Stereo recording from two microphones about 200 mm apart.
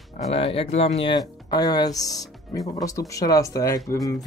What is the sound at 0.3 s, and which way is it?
Speech, 30° left (ahead or behind).